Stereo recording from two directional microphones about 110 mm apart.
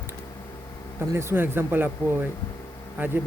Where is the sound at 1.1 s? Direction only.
25° right (ahead or behind).